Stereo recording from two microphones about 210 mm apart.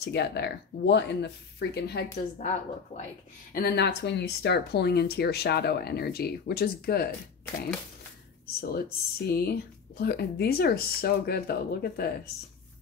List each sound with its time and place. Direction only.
0.0 s speech: 55° left (ahead or behind)
2.1 s a woman's voice: 30° left (ahead or behind)
3.5 s speech: 50° left (ahead or behind)
8.5 s speech: 45° left (ahead or behind)